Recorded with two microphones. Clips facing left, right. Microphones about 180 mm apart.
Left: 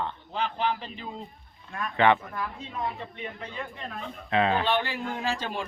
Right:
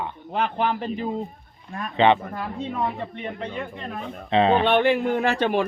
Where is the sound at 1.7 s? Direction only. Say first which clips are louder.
Right 4 dB; 20° right (ahead or behind).